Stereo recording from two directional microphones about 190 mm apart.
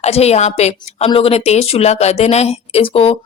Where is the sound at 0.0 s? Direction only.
35° left (ahead or behind).